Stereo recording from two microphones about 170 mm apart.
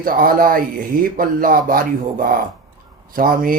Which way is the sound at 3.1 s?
55° right (ahead or behind).